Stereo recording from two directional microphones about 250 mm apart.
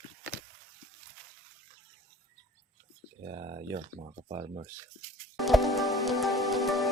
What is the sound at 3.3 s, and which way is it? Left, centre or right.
Speech, right.